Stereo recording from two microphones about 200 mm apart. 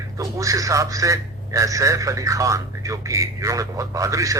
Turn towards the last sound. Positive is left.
turn(degrees=-15)  # may be behind; listen again after turning